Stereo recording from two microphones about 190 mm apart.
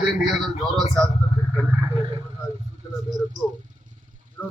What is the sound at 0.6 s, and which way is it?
Speech, 20° right (ahead or behind).